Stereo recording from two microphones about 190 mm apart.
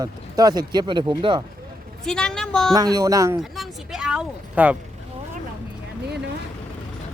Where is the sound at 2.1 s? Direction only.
5° left (ahead or behind).